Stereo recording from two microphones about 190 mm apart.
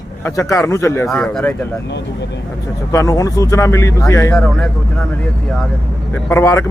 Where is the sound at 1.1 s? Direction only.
Centre (ahead or behind).